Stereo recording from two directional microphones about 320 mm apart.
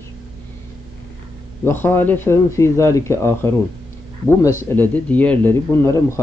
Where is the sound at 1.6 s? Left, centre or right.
Centre.